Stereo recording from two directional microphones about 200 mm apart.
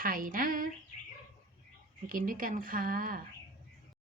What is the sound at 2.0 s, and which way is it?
Speech, 45° right (ahead or behind).